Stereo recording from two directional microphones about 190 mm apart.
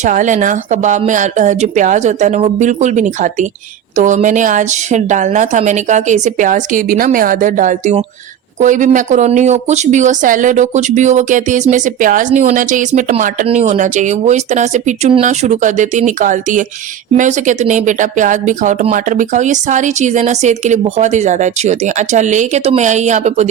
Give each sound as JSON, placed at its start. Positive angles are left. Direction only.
{"t": 0.0, "sound": "speech", "side_deg": -40}